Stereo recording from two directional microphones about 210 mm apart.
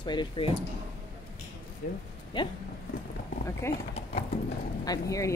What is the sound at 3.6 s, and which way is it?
Speech, 15° left (ahead or behind).